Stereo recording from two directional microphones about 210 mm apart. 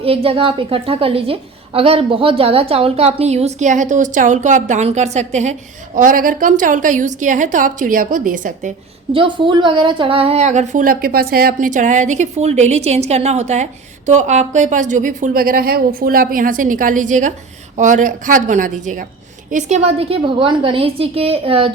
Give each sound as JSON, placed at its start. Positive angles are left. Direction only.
{"t": 0.0, "sound": "a woman's voice", "side_deg": -25}
{"t": 9.1, "sound": "a woman's voice", "side_deg": -25}